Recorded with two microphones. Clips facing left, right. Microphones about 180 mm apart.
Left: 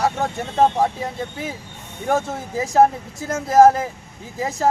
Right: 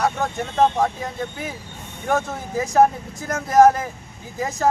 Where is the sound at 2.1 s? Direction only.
25° left (ahead or behind).